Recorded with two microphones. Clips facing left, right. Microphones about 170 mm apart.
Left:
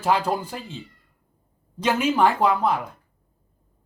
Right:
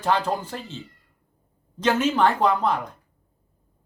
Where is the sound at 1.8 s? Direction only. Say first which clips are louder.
Even; 10° left (ahead or behind).